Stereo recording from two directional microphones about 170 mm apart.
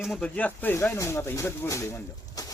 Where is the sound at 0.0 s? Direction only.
5° left (ahead or behind).